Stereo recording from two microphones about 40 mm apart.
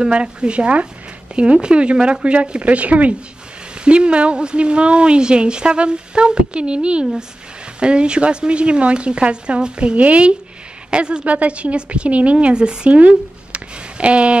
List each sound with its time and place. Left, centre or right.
0.0 s speech: right
2.6 s a woman's voice: right
3.7 s a woman's voice: right
11.2 s a woman's voice: right
12.9 s a sound: right